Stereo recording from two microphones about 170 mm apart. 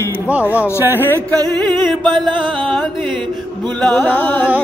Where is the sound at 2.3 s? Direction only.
30° right (ahead or behind).